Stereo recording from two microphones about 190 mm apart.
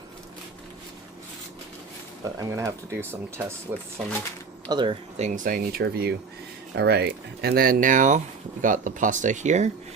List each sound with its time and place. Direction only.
2.4 s speech: 15° right (ahead or behind)
4.7 s speech: 25° right (ahead or behind)
5.1 s speech: 40° right (ahead or behind)